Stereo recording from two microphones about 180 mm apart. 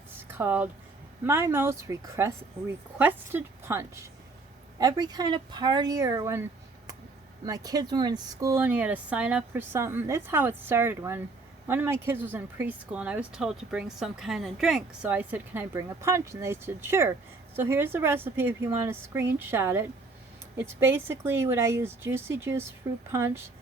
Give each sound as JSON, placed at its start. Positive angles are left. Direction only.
{"t": 0.2, "sound": "a sound", "side_deg": -10}
{"t": 1.2, "sound": "speech", "side_deg": -15}
{"t": 7.4, "sound": "speech", "side_deg": -20}